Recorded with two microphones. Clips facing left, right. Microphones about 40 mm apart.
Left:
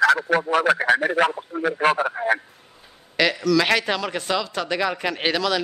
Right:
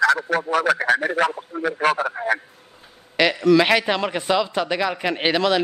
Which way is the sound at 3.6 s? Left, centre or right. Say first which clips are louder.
Right 2 dB; centre.